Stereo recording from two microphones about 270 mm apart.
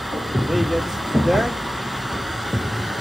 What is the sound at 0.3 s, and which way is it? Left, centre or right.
Speech, centre.